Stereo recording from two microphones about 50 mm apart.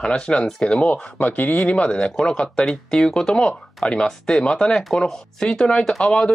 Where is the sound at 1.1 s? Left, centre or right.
Left.